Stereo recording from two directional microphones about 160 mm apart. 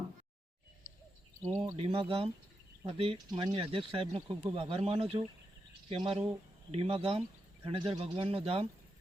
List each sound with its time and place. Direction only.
1.7 s speech: 35° right (ahead or behind)